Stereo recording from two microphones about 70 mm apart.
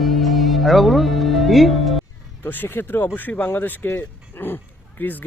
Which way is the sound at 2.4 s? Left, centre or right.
Left.